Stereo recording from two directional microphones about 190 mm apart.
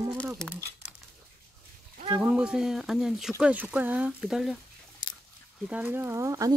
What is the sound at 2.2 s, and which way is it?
Speech, 5° right (ahead or behind).